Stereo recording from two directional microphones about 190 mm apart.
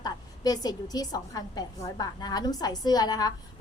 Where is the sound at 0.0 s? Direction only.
20° left (ahead or behind).